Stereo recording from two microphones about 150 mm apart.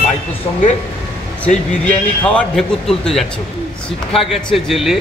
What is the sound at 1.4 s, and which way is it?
Speech, 50° left (ahead or behind).